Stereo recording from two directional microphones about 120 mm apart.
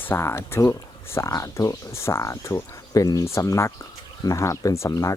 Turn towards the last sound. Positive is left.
turn(degrees=25)  # may be behind; listen again after turning